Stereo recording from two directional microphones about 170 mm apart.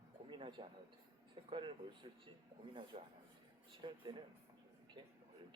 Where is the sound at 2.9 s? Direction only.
35° right (ahead or behind).